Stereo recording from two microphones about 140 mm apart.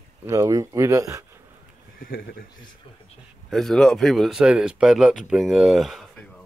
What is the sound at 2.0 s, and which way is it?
Speech, 90° left.